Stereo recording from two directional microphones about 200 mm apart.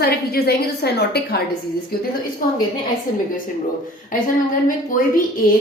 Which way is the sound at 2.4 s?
45° left (ahead or behind).